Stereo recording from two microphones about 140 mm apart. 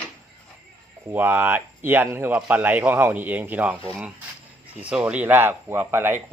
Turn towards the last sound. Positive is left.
turn(degrees=-15)  # may be behind; listen again after turning